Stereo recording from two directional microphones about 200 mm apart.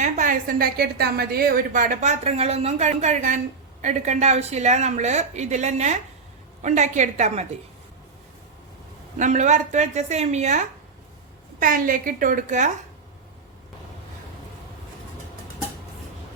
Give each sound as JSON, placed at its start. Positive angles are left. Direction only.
{"t": 0.0, "sound": "a woman's voice", "side_deg": -40}
{"t": 9.1, "sound": "a woman's voice", "side_deg": -35}